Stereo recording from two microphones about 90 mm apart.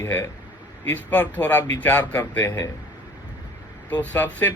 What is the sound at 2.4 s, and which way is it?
Speech, 40° left (ahead or behind).